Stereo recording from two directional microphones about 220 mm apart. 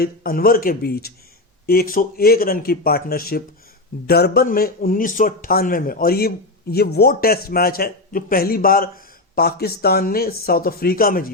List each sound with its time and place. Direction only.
0.0 s speech: 40° left (ahead or behind)